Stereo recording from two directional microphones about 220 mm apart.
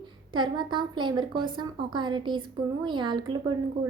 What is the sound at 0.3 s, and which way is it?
A woman's voice, 20° right (ahead or behind).